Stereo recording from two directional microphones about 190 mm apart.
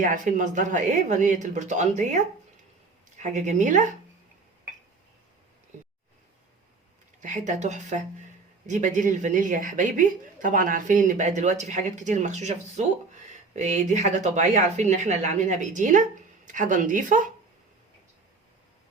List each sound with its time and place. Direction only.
0.0 s speech: 40° right (ahead or behind)
3.2 s speech: 40° right (ahead or behind)
7.2 s speech: 40° right (ahead or behind)